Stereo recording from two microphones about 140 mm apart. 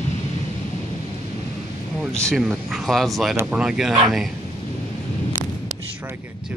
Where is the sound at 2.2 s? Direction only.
Centre (ahead or behind).